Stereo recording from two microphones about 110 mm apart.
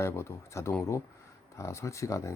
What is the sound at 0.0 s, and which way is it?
Speech, 25° left (ahead or behind).